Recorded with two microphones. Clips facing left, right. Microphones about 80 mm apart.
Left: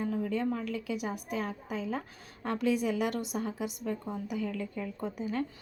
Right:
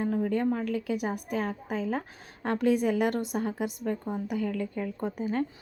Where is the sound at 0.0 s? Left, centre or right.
Right.